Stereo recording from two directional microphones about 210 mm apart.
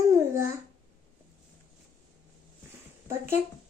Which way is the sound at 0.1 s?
15° right (ahead or behind).